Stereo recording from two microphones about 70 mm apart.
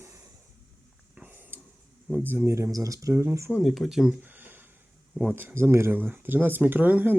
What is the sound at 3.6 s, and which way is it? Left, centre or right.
Speech, centre.